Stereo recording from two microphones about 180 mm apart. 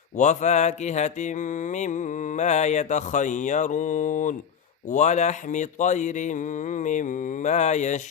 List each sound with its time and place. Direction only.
0.2 s mantra: 40° left (ahead or behind)